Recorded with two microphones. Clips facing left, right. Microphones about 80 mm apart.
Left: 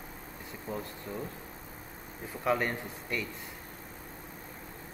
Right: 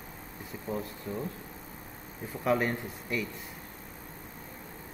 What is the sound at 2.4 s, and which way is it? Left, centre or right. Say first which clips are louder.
Speech: right 2 dB; centre.